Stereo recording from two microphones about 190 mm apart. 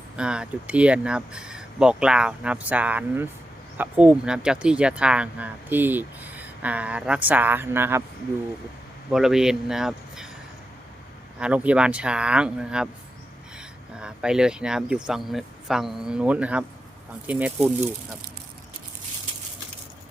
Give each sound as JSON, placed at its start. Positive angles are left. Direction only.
{"t": 0.2, "sound": "speech", "side_deg": -5}
{"t": 9.1, "sound": "speech", "side_deg": 0}
{"t": 11.3, "sound": "speech", "side_deg": -5}
{"t": 14.0, "sound": "speech", "side_deg": -5}